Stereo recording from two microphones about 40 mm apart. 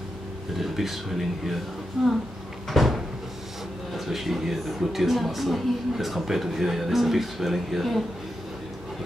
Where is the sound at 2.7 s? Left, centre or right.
Centre.